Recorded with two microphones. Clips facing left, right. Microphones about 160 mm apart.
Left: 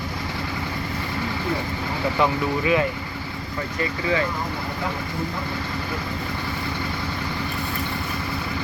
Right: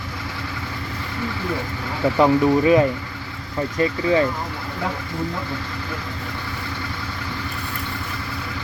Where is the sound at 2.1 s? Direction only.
35° right (ahead or behind).